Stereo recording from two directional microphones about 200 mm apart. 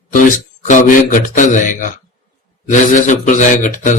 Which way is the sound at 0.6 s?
40° left (ahead or behind).